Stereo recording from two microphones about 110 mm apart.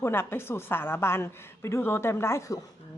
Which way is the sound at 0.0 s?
20° left (ahead or behind).